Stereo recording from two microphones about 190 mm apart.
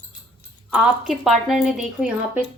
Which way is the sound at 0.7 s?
5° right (ahead or behind).